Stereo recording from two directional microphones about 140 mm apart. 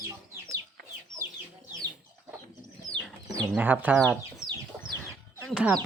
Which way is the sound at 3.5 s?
10° right (ahead or behind).